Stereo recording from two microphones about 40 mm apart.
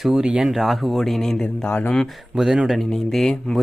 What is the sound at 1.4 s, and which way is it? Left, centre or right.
Speech, left.